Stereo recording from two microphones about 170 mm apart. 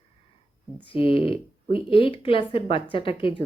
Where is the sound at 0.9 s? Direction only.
30° left (ahead or behind).